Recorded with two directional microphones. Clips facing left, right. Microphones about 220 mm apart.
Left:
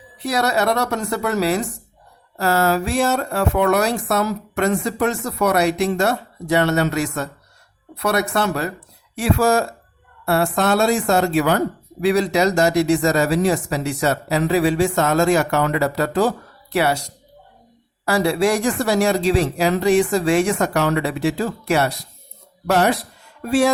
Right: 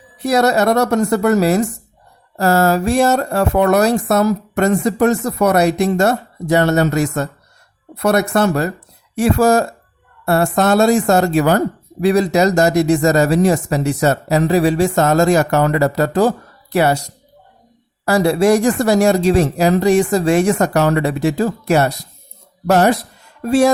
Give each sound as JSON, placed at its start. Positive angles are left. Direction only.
{"t": 0.2, "sound": "speech", "side_deg": -45}
{"t": 18.0, "sound": "speech", "side_deg": -40}